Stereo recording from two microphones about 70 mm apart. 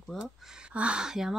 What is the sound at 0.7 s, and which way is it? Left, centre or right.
Speech, centre.